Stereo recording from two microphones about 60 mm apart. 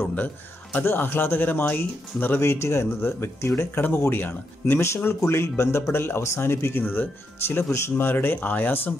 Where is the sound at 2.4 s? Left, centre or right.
Left.